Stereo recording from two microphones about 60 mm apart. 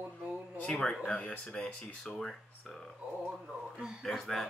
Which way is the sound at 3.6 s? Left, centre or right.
Centre.